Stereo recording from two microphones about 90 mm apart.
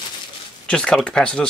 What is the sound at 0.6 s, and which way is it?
Speech, 10° left (ahead or behind).